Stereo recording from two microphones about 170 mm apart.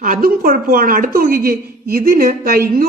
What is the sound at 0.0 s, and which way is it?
A woman's voice, 55° right (ahead or behind).